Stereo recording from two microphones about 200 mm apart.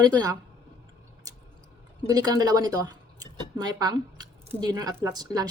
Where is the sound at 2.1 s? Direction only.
20° right (ahead or behind).